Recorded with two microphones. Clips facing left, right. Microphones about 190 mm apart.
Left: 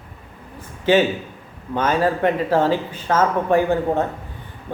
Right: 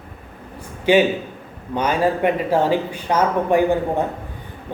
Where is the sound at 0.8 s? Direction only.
15° right (ahead or behind).